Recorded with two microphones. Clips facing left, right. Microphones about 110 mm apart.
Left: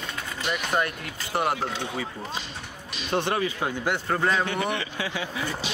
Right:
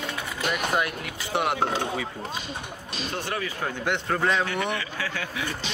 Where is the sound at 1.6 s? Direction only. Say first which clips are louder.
Right 4 dB; 45° right (ahead or behind).